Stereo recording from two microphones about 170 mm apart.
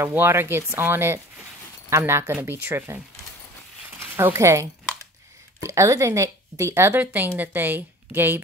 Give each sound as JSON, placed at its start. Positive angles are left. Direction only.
{"t": 0.0, "sound": "speech", "side_deg": -15}
{"t": 4.2, "sound": "speech", "side_deg": -15}